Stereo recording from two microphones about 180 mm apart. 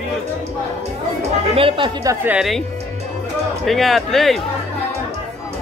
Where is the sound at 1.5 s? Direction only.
30° right (ahead or behind).